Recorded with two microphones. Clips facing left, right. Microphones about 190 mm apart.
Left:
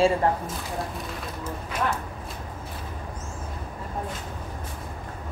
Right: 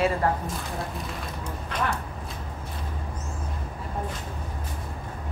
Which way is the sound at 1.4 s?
5° left (ahead or behind).